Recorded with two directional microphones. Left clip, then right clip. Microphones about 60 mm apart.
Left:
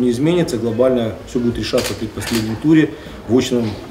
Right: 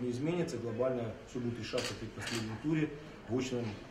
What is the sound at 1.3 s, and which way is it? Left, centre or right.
Speech, centre.